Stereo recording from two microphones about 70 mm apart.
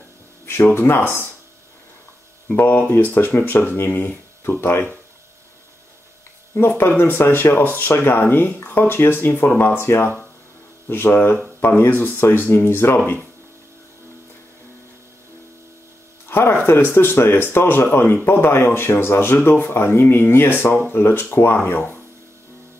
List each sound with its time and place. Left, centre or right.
0.5 s speech: left
2.4 s speech: left
7.0 s speech: left
16.3 s speech: left